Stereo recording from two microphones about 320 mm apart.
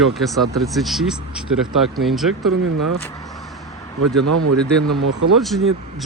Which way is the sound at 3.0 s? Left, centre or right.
Centre.